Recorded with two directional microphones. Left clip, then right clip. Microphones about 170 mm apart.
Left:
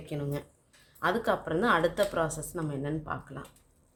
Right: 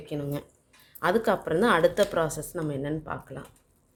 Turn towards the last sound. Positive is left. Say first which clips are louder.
# right 2 dB
turn(degrees=-30)  # may be behind; listen again after turning